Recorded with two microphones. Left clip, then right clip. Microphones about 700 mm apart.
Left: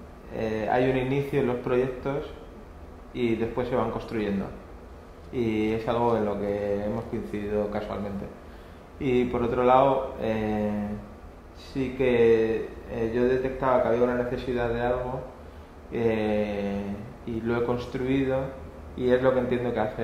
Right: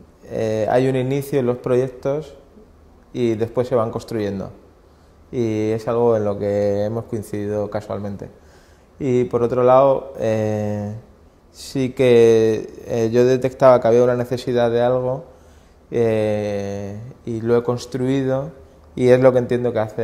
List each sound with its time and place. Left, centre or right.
0.3 s speech: right
5.3 s speech: right
9.0 s speech: right
11.7 s speech: right
15.9 s speech: right